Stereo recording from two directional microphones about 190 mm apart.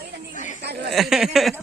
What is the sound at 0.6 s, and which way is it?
Speech, 60° right (ahead or behind).